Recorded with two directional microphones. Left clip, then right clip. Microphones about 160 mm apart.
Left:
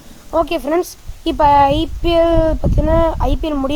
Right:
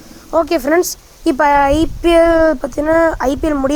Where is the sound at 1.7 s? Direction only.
90° right.